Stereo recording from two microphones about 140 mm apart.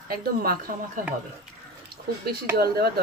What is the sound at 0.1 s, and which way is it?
Speech, 90° right.